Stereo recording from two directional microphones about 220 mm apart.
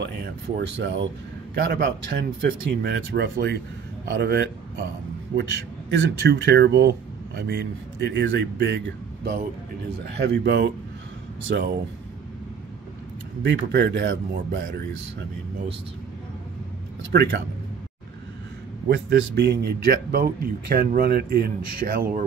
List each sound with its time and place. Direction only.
0.0 s speech: 50° right (ahead or behind)
10.1 s speech: 50° right (ahead or behind)
13.4 s speech: 50° right (ahead or behind)
17.1 s speech: 50° right (ahead or behind)
18.9 s speech: 50° right (ahead or behind)